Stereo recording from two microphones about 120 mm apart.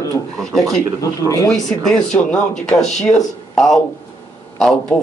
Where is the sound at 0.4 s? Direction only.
5° left (ahead or behind).